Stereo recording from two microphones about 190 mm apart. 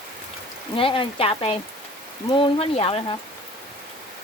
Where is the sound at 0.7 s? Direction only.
30° left (ahead or behind).